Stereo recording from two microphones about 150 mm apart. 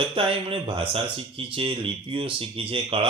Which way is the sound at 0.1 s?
35° right (ahead or behind).